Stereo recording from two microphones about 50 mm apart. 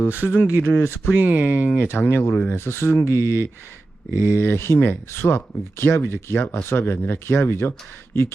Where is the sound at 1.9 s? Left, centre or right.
Left.